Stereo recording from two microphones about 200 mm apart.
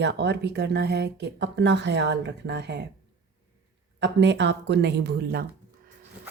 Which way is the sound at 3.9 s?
60° right (ahead or behind).